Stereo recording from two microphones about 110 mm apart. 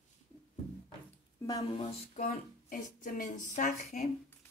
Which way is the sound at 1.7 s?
75° left (ahead or behind).